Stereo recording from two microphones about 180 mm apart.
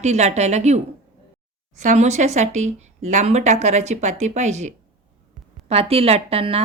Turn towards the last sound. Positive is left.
turn(degrees=-35)  # may be behind; listen again after turning